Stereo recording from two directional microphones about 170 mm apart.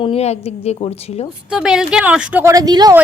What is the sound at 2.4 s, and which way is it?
Speech, 20° right (ahead or behind).